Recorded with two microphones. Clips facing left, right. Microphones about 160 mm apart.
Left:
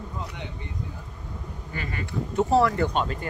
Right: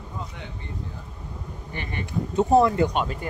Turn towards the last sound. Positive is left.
turn(degrees=-10)  # may be behind; listen again after turning